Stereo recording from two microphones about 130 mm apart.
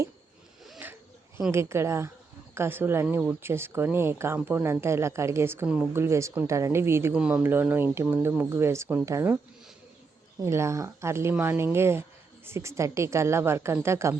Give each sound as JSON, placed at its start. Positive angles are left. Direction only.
{"t": 0.8, "sound": "a sound", "side_deg": -15}
{"t": 1.5, "sound": "speech", "side_deg": -20}
{"t": 5.6, "sound": "speech", "side_deg": -10}
{"t": 5.9, "sound": "speech", "side_deg": -20}
{"t": 10.4, "sound": "speech", "side_deg": -20}